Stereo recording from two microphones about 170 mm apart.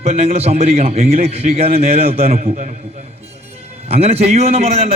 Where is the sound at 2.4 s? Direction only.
45° right (ahead or behind).